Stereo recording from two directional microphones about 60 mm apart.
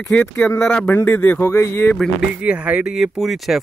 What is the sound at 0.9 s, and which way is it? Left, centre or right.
Speech, left.